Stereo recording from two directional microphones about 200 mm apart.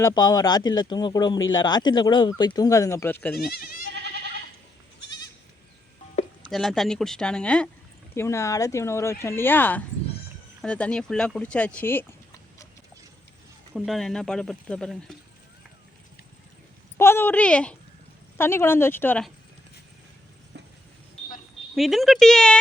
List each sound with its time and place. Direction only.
0.0 s speech: 20° left (ahead or behind)
3.3 s speech: 50° left (ahead or behind)
6.4 s speech: centre (ahead or behind)
13.7 s speech: centre (ahead or behind)
17.0 s speech: 10° left (ahead or behind)
21.8 s speech: centre (ahead or behind)